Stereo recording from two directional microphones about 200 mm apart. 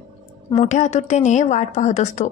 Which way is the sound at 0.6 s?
35° left (ahead or behind).